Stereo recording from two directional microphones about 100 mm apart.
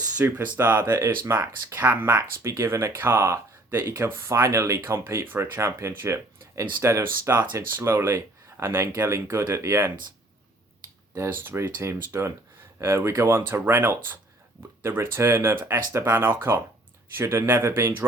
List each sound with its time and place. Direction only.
0.3 s speech: 20° right (ahead or behind)
2.1 s speech: 30° right (ahead or behind)
11.1 s speech: 25° right (ahead or behind)